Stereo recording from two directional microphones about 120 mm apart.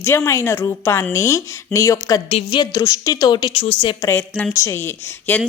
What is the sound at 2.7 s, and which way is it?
Speech, 25° left (ahead or behind).